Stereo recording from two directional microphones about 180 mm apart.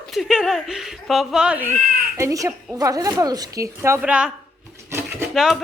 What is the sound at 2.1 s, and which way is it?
Speech, 20° right (ahead or behind).